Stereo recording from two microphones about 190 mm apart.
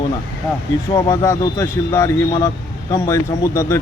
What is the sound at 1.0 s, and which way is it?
A man's voice, 15° left (ahead or behind).